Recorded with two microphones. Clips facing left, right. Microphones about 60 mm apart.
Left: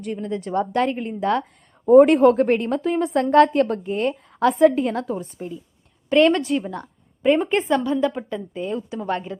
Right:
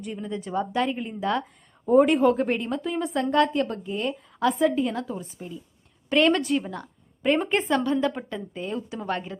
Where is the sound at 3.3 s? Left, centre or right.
Left.